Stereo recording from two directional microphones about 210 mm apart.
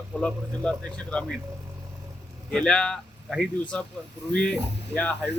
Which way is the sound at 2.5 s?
5° left (ahead or behind).